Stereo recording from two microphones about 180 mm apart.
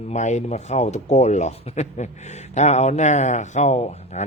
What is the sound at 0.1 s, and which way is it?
Speech, 40° left (ahead or behind).